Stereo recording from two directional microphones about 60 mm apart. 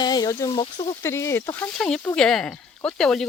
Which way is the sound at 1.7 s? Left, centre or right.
Centre.